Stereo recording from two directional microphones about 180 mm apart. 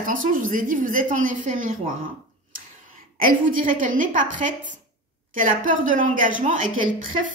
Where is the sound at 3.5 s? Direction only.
50° right (ahead or behind).